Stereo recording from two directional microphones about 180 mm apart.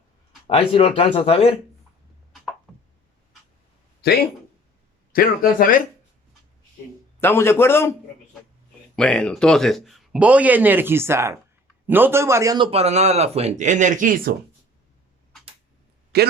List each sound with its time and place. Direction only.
0.4 s speech: 30° left (ahead or behind)
2.7 s a sound: centre (ahead or behind)
5.1 s speech: 55° left (ahead or behind)
7.2 s a man's voice: 15° left (ahead or behind)
9.0 s speech: 5° left (ahead or behind); by 12.6 s 20° right (ahead or behind)
12.7 s speech: 35° right (ahead or behind)
16.1 s a man's voice: 65° right (ahead or behind)